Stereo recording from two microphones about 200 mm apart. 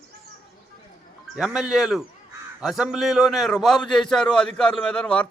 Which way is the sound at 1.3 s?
5° right (ahead or behind).